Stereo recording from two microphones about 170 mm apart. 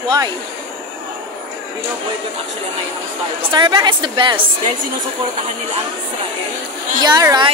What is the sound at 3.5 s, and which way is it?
A woman's voice, 25° right (ahead or behind).